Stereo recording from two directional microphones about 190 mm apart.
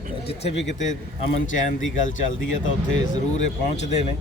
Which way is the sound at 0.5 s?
70° left (ahead or behind).